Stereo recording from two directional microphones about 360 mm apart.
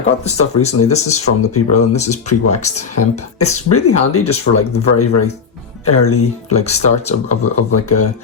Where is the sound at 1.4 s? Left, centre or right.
Left.